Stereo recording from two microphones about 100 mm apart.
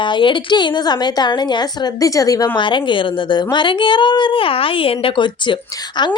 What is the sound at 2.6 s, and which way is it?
A woman's voice, 55° left (ahead or behind).